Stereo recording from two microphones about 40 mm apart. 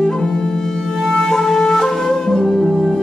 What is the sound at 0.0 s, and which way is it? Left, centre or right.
Music, centre.